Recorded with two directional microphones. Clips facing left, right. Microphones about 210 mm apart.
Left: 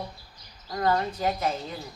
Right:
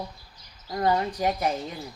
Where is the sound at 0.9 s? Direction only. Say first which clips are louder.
Right 1 dB; 15° right (ahead or behind).